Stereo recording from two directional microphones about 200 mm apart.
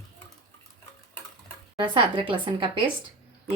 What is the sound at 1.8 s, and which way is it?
A woman's voice, 25° right (ahead or behind).